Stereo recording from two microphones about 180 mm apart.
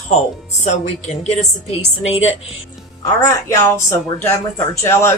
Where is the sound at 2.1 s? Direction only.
90° left.